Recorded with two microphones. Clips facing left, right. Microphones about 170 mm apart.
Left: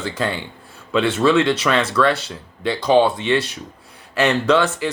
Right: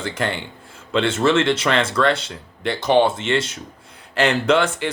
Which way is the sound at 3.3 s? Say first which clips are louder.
Left 2 dB; 25° right (ahead or behind).